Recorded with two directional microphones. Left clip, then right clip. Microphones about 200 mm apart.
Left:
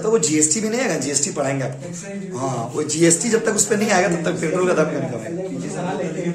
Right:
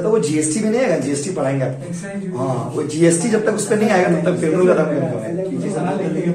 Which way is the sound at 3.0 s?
45° left (ahead or behind).